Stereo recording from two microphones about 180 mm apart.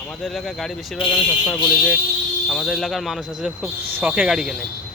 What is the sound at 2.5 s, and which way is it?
Speech, centre (ahead or behind).